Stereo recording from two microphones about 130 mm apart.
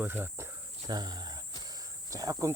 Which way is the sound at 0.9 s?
30° right (ahead or behind).